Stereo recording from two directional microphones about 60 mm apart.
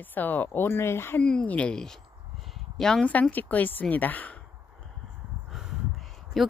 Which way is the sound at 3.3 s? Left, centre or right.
Left.